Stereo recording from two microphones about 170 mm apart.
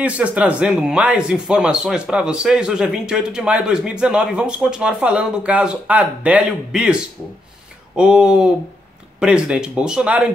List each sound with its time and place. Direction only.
0.0 s speech: 10° right (ahead or behind)